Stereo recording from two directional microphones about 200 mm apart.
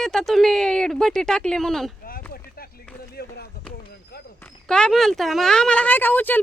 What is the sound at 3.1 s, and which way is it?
Speech, 50° left (ahead or behind).